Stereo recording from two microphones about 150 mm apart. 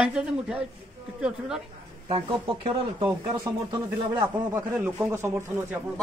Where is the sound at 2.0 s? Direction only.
35° right (ahead or behind).